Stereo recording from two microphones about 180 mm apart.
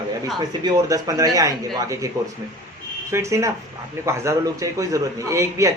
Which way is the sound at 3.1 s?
15° right (ahead or behind).